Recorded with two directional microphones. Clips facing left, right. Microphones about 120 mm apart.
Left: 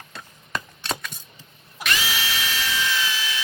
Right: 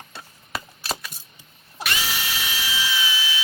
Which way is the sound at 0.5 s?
5° right (ahead or behind).